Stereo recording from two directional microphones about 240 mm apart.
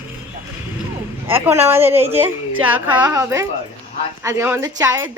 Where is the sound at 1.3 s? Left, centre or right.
Centre.